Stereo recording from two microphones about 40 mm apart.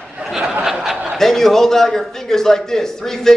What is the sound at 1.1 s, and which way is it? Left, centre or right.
A man's voice, centre.